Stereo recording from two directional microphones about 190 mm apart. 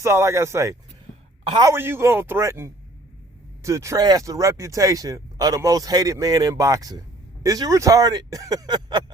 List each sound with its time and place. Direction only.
0.0 s speech: 15° right (ahead or behind)